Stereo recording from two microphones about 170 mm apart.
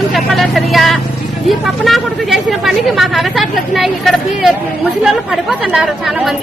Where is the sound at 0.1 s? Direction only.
Centre (ahead or behind).